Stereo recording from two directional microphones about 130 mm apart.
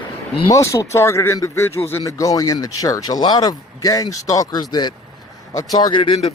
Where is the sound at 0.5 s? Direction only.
25° left (ahead or behind); by 6.1 s 40° left (ahead or behind).